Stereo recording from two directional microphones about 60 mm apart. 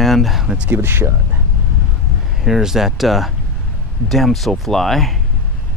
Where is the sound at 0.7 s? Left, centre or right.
Right.